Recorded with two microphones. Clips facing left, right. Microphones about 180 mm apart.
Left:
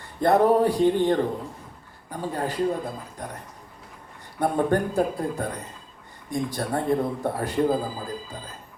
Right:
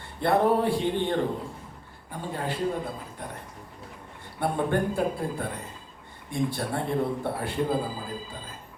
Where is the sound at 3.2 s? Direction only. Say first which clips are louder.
Left 4 dB; 40° left (ahead or behind).